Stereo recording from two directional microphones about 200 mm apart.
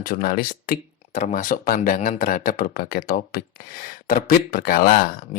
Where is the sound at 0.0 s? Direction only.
45° left (ahead or behind).